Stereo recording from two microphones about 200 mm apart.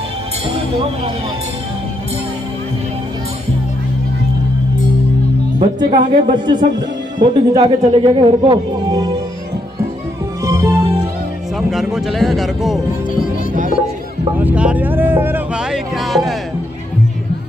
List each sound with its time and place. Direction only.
5.8 s speech: 25° right (ahead or behind)
10.4 s music: 15° right (ahead or behind)
11.5 s speech: centre (ahead or behind)
14.4 s speech: 5° right (ahead or behind)